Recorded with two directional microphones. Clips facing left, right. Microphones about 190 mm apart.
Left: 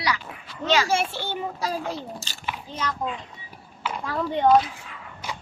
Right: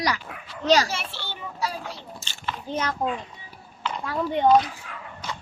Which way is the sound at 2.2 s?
40° left (ahead or behind).